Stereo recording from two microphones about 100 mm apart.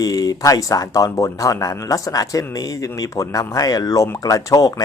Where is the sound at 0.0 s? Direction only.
35° left (ahead or behind).